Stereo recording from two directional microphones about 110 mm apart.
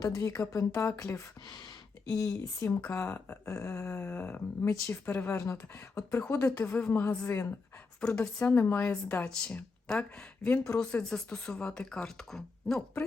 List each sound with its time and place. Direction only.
0.0 s speech: 30° left (ahead or behind)
2.6 s a woman's voice: 15° left (ahead or behind)
3.5 s speech: 25° left (ahead or behind)
3.8 s a woman's voice: 15° left (ahead or behind)
5.4 s a woman's voice: 25° left (ahead or behind); by 13.1 s 10° left (ahead or behind)